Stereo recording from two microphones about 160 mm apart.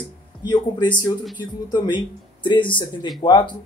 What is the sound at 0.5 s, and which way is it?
Speech, 30° left (ahead or behind).